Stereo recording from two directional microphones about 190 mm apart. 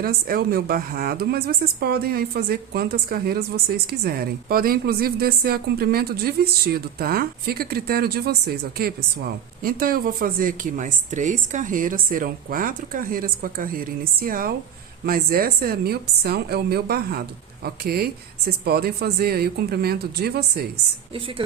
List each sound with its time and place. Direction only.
0.0 s a woman's voice: 50° right (ahead or behind)